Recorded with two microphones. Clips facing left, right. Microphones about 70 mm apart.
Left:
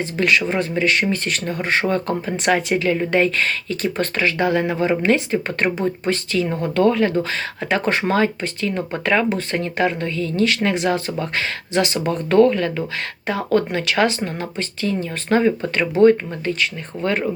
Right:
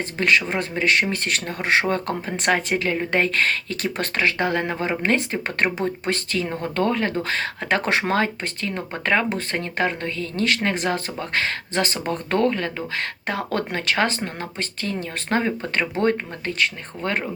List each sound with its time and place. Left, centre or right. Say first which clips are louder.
0.0 s speech: left 2 dB; right
1.8 s speech: left 3 dB; right
13.2 s speech: left 8 dB; right